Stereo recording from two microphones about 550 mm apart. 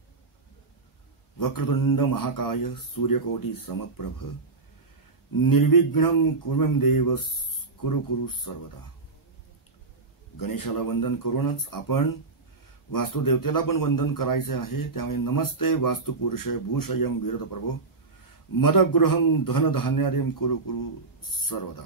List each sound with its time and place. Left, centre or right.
1.4 s a man's voice: left
5.3 s a man's voice: left
10.4 s a man's voice: left
18.6 s a man's voice: left